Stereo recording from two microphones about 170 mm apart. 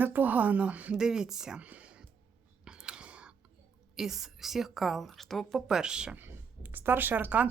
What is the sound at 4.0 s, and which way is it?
A woman's voice, centre (ahead or behind).